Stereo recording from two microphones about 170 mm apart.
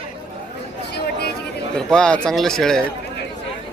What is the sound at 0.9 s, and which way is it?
Speech, 75° left (ahead or behind).